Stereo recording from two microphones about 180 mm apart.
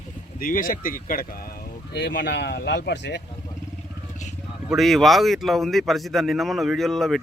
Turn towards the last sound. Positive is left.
turn(degrees=0)  # may be behind; listen again after turning